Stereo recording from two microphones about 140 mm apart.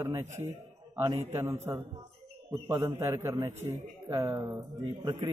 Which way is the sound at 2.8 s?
20° right (ahead or behind).